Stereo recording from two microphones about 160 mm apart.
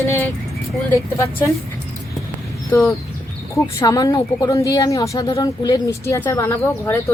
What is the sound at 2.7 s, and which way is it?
A woman's voice, 15° left (ahead or behind).